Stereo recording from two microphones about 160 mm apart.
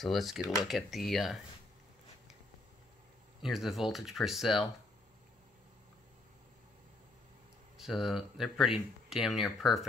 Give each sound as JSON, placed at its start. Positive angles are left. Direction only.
{"t": 0.0, "sound": "speech", "side_deg": 0}
{"t": 3.4, "sound": "speech", "side_deg": 0}
{"t": 7.7, "sound": "speech", "side_deg": 0}